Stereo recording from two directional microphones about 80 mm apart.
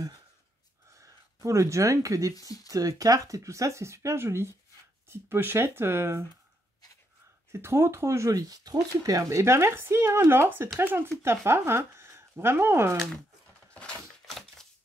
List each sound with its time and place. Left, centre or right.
0.9 s speech: right
7.5 s speech: right
13.7 s a sound: centre